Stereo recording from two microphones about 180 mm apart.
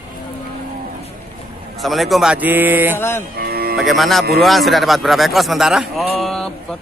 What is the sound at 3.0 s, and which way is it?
Cattle, 15° left (ahead or behind).